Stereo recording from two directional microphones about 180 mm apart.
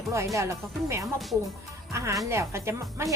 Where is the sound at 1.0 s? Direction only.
Centre (ahead or behind).